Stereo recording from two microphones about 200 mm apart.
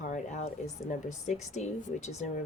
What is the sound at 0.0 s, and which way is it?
Speech, 35° left (ahead or behind).